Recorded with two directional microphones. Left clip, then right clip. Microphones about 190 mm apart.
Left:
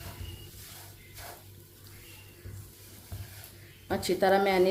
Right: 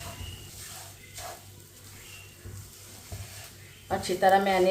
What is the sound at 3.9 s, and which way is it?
Speech, 55° left (ahead or behind).